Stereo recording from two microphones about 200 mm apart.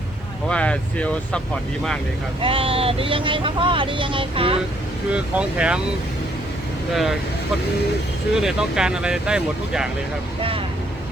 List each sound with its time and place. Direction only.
0.4 s speech: 5° left (ahead or behind)
2.4 s speech: 25° right (ahead or behind)
5.1 s speech: 5° right (ahead or behind)
6.9 s speech: centre (ahead or behind)
8.3 s speech: 5° right (ahead or behind)